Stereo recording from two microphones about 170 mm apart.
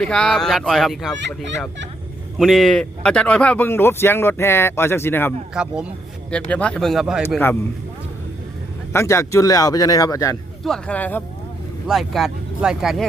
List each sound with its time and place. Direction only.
0.0 s speech: 5° left (ahead or behind)
5.5 s speech: 5° right (ahead or behind)
6.5 s speech: 5° left (ahead or behind)
8.9 s speech: 15° left (ahead or behind)
10.6 s speech: 5° left (ahead or behind)